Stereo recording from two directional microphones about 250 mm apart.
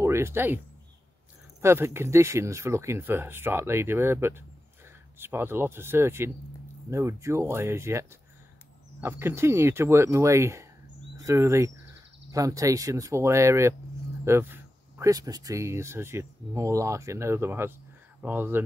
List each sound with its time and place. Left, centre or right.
0.0 s speech: centre
1.6 s speech: centre